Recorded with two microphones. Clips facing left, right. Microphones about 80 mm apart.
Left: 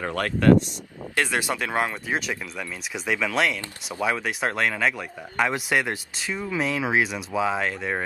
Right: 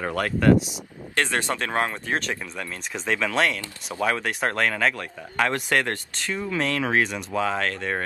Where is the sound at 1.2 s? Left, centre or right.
Centre.